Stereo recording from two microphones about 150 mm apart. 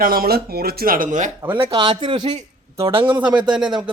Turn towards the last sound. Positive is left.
turn(degrees=-5)  # may be behind; listen again after turning